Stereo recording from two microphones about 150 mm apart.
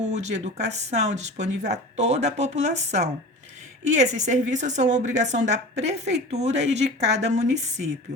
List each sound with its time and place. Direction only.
0.0 s a woman's voice: 50° right (ahead or behind)